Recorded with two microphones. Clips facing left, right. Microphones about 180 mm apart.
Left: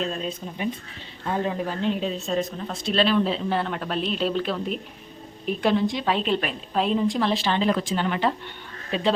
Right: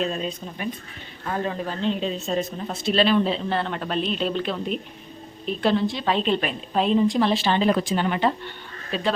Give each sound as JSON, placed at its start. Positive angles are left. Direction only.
{"t": 0.0, "sound": "speech", "side_deg": -5}
{"t": 1.2, "sound": "speech", "side_deg": 15}
{"t": 5.5, "sound": "speech", "side_deg": 15}
{"t": 8.9, "sound": "speech", "side_deg": 20}